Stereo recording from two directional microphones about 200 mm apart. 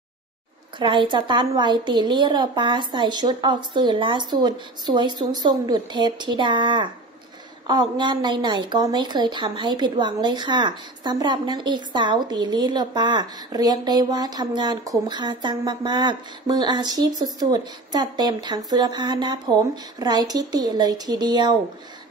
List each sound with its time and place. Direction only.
0.7 s a woman's voice: 25° right (ahead or behind)